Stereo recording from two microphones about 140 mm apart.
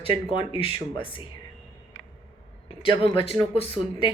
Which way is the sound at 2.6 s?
40° left (ahead or behind).